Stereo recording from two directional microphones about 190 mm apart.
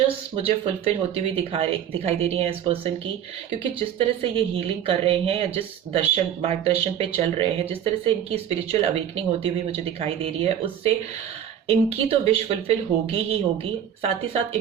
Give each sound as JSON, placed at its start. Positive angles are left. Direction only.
{"t": 0.3, "sound": "a woman's voice", "side_deg": -30}